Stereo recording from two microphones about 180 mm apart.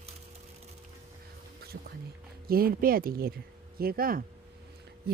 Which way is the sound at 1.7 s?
65° right (ahead or behind).